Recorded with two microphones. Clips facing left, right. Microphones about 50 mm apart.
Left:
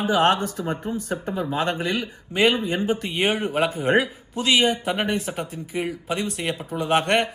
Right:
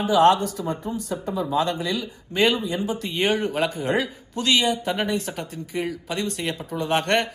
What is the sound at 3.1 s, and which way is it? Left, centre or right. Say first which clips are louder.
Speech: right 1 dB; left.